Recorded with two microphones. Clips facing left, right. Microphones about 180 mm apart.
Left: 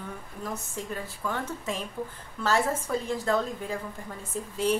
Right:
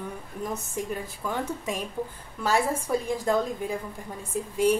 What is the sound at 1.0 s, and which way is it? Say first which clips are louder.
A woman's voice: right 2 dB; 15° right (ahead or behind).